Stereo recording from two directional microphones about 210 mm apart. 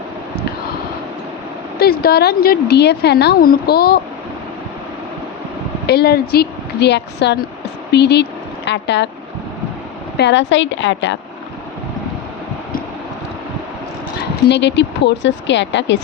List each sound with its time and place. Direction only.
1.8 s speech: 45° left (ahead or behind)
5.8 s speech: 50° left (ahead or behind)
10.2 s speech: 60° left (ahead or behind)
14.2 s speech: 55° left (ahead or behind)